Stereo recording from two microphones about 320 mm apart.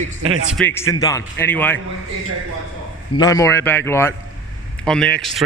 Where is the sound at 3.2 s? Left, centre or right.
Centre.